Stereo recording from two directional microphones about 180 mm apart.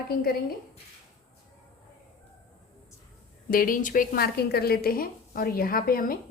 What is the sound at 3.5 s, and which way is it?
A woman's voice, 50° left (ahead or behind).